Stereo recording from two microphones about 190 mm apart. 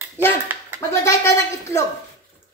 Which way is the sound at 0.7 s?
15° left (ahead or behind).